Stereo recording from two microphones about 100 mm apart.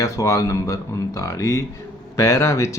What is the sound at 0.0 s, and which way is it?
Speech, 35° left (ahead or behind).